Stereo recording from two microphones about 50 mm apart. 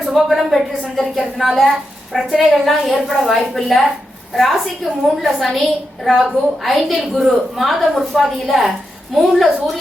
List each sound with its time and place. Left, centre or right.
0.0 s a woman's voice: centre